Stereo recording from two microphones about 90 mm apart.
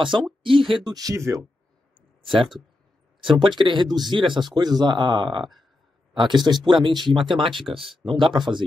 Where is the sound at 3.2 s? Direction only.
65° right (ahead or behind).